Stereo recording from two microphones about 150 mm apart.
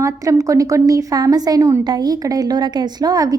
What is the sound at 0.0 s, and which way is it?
A woman's voice, 20° right (ahead or behind).